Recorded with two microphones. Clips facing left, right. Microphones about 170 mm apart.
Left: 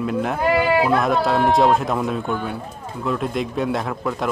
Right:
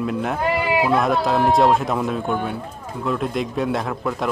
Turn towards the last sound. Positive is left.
turn(degrees=0)  # may be behind; listen again after turning